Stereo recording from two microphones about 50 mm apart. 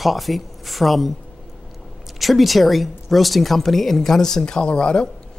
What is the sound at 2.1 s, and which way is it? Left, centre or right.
Speech, centre.